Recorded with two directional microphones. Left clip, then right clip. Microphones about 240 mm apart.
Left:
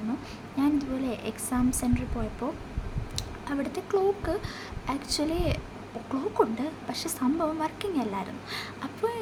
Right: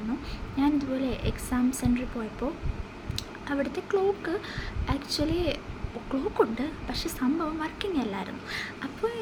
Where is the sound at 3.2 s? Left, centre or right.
Centre.